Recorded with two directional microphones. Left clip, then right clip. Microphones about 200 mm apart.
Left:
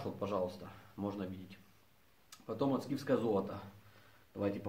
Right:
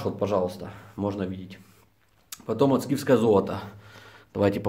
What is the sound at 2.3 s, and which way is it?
Speech, 35° right (ahead or behind).